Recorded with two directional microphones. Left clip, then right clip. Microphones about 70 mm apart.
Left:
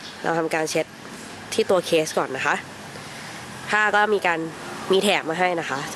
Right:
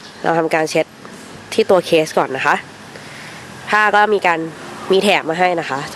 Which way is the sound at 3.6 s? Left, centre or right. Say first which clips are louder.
Right 7 dB; right.